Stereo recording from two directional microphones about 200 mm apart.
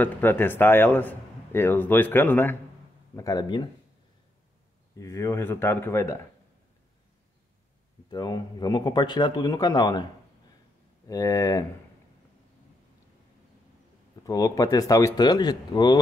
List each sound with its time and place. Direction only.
0.0 s a man's voice: 10° left (ahead or behind)
4.9 s a man's voice: 15° left (ahead or behind)
8.1 s speech: 20° left (ahead or behind)
11.1 s a man's voice: 15° left (ahead or behind)
14.2 s a man's voice: 15° left (ahead or behind)